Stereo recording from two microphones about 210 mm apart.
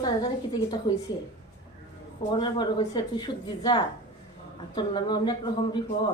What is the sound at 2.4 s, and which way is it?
Speech, 20° left (ahead or behind).